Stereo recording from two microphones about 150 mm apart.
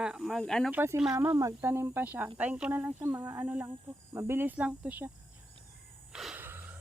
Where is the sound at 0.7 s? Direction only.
10° right (ahead or behind).